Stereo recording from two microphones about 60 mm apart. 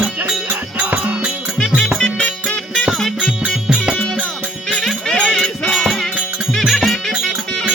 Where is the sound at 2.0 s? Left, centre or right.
Centre.